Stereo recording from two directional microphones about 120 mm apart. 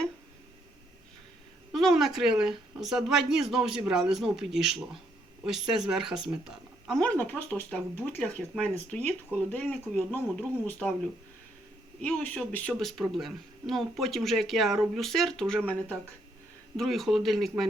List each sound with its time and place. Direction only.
1.7 s speech: centre (ahead or behind)
7.1 s speech: 15° left (ahead or behind)
12.0 s speech: 10° left (ahead or behind)